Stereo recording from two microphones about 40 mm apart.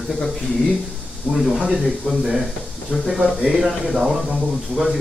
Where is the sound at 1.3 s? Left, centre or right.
Centre.